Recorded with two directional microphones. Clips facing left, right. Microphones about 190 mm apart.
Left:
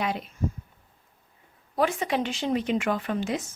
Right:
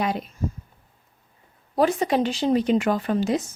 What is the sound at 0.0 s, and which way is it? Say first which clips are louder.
Speech: right 4 dB; 40° right (ahead or behind).